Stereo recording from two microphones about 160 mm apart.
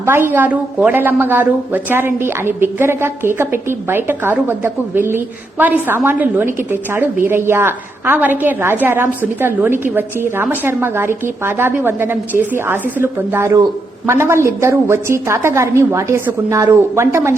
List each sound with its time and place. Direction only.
0.0 s a woman's voice: 15° right (ahead or behind)